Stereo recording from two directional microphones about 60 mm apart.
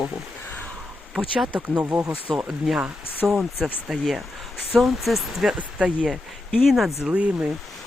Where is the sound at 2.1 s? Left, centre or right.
Right.